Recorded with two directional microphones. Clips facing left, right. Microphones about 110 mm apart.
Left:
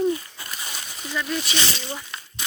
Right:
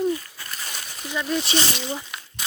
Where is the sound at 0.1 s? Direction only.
20° left (ahead or behind).